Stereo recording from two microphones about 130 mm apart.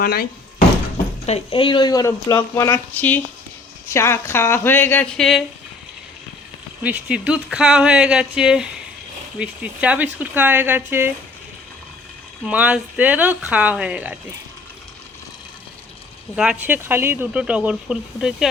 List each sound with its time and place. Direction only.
1.3 s speech: 45° left (ahead or behind); by 5.0 s 15° left (ahead or behind)
5.1 s speech: 5° left (ahead or behind)
6.8 s speech: 10° right (ahead or behind)
12.5 s speech: 10° right (ahead or behind)
16.3 s speech: 5° right (ahead or behind)